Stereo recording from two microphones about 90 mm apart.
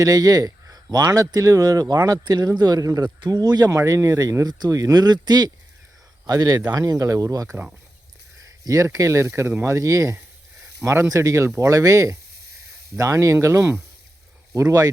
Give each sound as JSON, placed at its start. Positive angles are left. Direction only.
{"t": 0.0, "sound": "speech", "side_deg": -40}
{"t": 8.6, "sound": "speech", "side_deg": -40}
{"t": 11.1, "sound": "speech", "side_deg": -40}